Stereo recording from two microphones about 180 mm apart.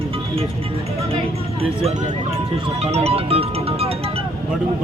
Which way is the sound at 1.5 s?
35° right (ahead or behind).